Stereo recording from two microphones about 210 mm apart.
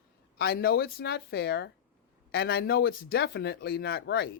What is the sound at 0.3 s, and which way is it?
Speech, 50° left (ahead or behind).